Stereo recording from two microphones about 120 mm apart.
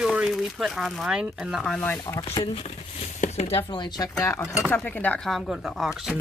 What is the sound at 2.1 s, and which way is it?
Speech, 35° left (ahead or behind).